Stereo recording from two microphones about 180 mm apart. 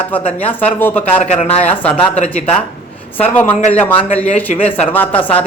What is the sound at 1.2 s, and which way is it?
Speech, 40° left (ahead or behind).